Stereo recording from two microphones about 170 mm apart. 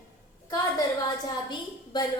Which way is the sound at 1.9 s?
25° left (ahead or behind).